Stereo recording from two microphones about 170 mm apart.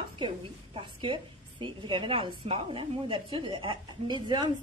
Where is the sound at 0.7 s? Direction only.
30° right (ahead or behind).